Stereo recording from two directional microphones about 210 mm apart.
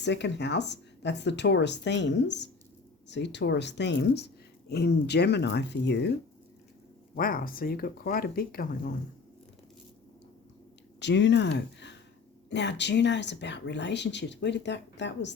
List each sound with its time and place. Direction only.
0.0 s speech: 55° left (ahead or behind)
7.2 s speech: 40° left (ahead or behind)
11.0 s speech: 55° left (ahead or behind)